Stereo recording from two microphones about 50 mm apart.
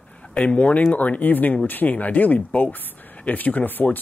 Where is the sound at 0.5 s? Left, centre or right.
Left.